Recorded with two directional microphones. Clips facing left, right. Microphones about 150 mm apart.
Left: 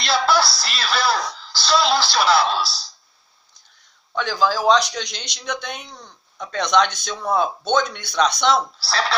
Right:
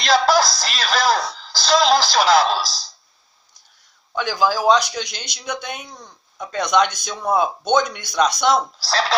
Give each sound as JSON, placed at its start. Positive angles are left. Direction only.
{"t": 0.1, "sound": "speech", "side_deg": -40}
{"t": 4.1, "sound": "speech", "side_deg": -10}
{"t": 8.8, "sound": "speech", "side_deg": -40}